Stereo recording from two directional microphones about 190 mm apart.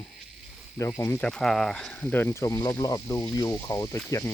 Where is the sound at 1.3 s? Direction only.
Centre (ahead or behind).